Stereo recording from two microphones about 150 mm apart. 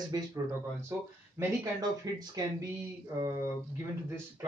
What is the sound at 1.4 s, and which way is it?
Speech, 20° right (ahead or behind).